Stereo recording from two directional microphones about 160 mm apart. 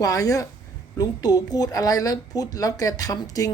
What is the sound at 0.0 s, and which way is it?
Speech, 20° left (ahead or behind).